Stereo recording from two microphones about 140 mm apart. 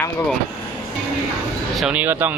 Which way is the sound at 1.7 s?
Centre (ahead or behind).